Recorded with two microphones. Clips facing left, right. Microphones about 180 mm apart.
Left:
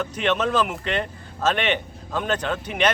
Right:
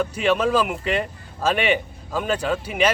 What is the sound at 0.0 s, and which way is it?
Speech, 10° right (ahead or behind).